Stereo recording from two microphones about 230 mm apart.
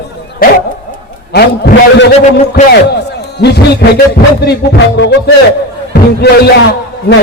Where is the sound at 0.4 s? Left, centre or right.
Left.